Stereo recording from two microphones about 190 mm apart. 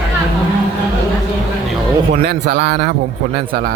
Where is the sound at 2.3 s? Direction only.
55° right (ahead or behind).